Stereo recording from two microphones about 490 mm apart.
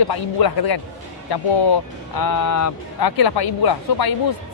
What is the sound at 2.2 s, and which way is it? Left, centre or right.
A man's voice, left.